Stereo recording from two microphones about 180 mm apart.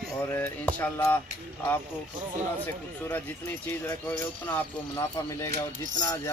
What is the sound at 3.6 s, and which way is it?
Speech, 10° left (ahead or behind).